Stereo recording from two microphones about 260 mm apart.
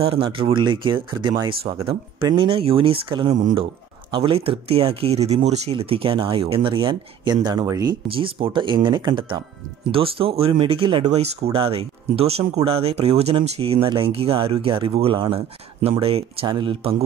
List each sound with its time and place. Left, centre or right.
0.0 s speech: right
3.3 s speech: right